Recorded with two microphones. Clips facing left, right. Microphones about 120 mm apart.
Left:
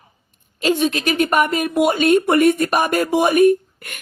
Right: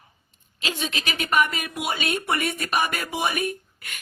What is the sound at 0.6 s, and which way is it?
Speech, 50° left (ahead or behind).